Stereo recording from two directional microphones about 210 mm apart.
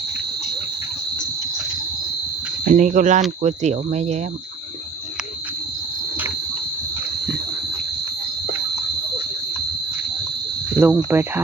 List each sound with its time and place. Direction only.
2.6 s speech: 35° right (ahead or behind)
10.8 s speech: 10° right (ahead or behind)